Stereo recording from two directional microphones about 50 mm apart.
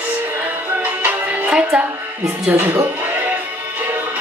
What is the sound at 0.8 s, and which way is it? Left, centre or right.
Music, right.